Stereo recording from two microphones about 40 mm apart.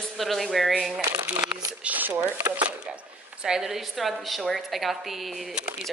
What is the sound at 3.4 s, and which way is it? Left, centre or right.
A woman's voice, centre.